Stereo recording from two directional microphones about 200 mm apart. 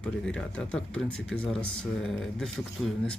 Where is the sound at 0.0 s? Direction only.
5° left (ahead or behind).